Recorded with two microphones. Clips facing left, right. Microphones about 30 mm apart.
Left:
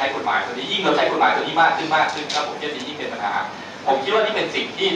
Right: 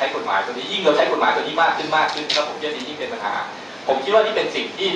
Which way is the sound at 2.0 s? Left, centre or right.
Right.